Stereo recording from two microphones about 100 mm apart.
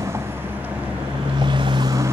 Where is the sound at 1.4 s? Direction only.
50° right (ahead or behind).